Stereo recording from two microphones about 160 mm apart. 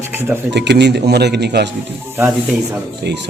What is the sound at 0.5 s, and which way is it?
Speech, 90° right.